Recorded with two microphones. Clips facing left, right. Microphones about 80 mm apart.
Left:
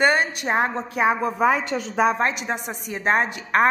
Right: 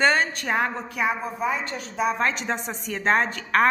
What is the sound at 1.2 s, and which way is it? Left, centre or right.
Speech, left.